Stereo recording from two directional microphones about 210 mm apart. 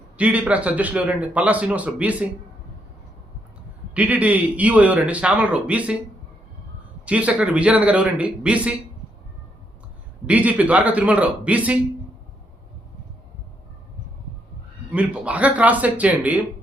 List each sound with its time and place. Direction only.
0.2 s a man's voice: 5° right (ahead or behind)
3.9 s a man's voice: 5° right (ahead or behind)
7.0 s a man's voice: 5° right (ahead or behind)
10.2 s a man's voice: 5° right (ahead or behind)
14.8 s a man's voice: 5° right (ahead or behind)